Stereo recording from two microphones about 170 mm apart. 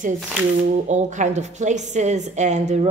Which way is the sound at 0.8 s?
45° right (ahead or behind).